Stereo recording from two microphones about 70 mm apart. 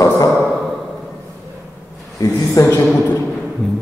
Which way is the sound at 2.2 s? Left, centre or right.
Left.